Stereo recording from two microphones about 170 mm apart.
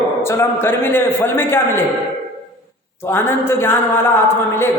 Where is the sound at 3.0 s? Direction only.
15° left (ahead or behind).